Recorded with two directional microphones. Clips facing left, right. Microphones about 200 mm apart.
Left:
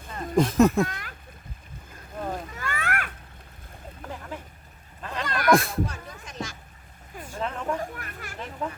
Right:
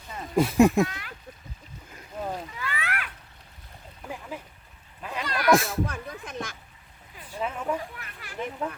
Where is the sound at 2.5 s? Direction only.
45° left (ahead or behind).